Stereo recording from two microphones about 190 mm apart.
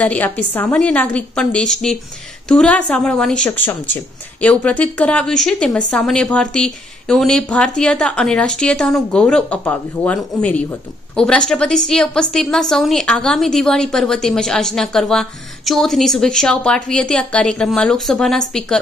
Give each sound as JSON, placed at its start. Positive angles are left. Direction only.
{"t": 0.0, "sound": "a woman's voice", "side_deg": 5}